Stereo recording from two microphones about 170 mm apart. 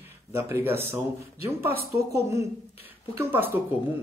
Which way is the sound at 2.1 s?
15° right (ahead or behind).